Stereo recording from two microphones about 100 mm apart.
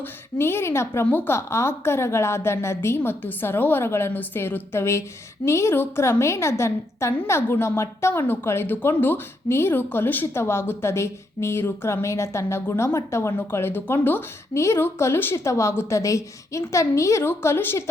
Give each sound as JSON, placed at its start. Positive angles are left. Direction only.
{"t": 0.0, "sound": "a woman's voice", "side_deg": 25}